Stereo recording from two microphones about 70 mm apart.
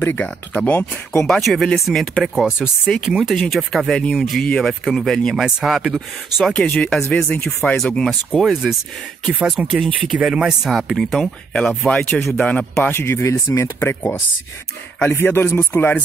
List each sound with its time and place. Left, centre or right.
0.0 s speech: left
1.2 s speech: centre
4.4 s speech: centre
5.3 s speech: centre
5.7 s speech: centre
8.3 s speech: centre
10.1 s speech: centre
11.0 s speech: centre
12.8 s speech: left
15.0 s speech: left